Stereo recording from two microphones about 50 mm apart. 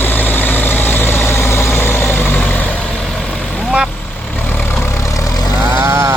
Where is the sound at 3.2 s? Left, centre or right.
Left.